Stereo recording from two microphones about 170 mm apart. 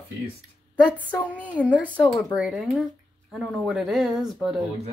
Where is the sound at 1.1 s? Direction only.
10° left (ahead or behind).